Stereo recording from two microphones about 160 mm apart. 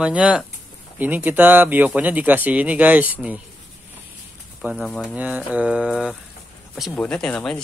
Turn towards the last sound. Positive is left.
turn(degrees=5)  # may be behind; listen again after turning